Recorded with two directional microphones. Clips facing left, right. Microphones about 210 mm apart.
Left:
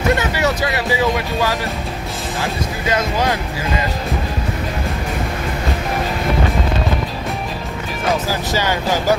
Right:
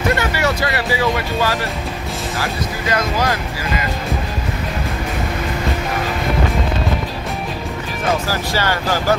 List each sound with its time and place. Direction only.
0.4 s speech: 15° left (ahead or behind)
8.3 s speech: 15° left (ahead or behind)